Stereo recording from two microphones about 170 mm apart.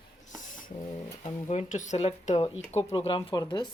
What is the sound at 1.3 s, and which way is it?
Speech, 40° left (ahead or behind).